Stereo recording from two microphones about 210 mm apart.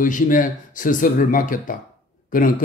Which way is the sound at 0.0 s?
40° left (ahead or behind).